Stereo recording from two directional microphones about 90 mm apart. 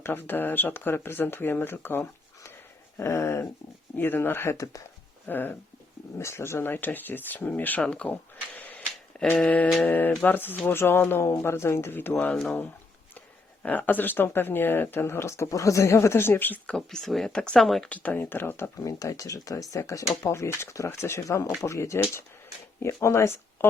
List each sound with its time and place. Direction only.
0.0 s speech: 25° left (ahead or behind)
5.3 s speech: 20° left (ahead or behind)
12.2 s speech: 10° left (ahead or behind)
13.6 s speech: 20° left (ahead or behind)
16.7 s speech: 5° left (ahead or behind)
17.8 s speech: 15° left (ahead or behind)
18.9 s speech: 40° left (ahead or behind)